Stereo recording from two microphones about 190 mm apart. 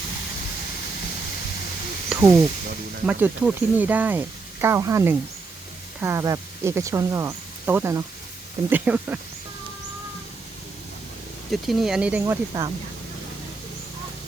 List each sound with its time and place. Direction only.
2.1 s a sound: 5° right (ahead or behind)
3.1 s speech: 10° right (ahead or behind)
11.5 s speech: centre (ahead or behind); by 12.7 s 20° right (ahead or behind)